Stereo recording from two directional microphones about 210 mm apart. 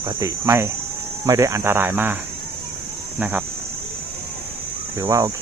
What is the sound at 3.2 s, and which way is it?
Speech, 10° right (ahead or behind).